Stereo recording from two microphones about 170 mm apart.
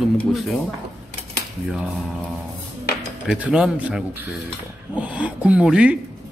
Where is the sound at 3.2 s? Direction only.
5° right (ahead or behind).